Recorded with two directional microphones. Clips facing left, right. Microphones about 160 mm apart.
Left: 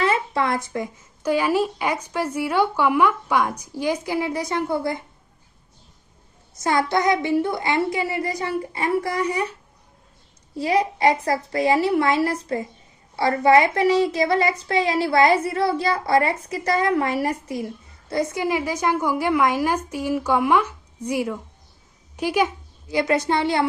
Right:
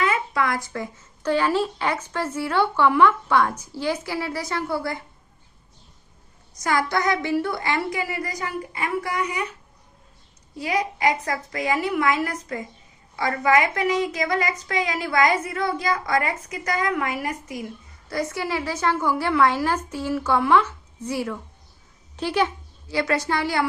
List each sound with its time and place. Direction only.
0.0 s speech: 30° left (ahead or behind)
6.5 s a woman's voice: 25° left (ahead or behind)
10.6 s a child's voice: 30° left (ahead or behind)
18.1 s a woman's voice: 20° left (ahead or behind)